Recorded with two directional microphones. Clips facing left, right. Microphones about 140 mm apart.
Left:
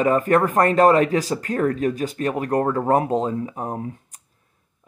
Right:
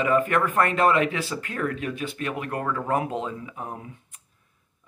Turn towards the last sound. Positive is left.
turn(degrees=40)  # may be behind; listen again after turning